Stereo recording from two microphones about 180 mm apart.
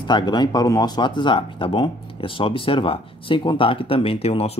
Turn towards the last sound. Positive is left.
turn(degrees=35)  # may be behind; listen again after turning